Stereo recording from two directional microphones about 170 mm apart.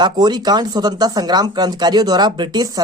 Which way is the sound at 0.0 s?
25° right (ahead or behind).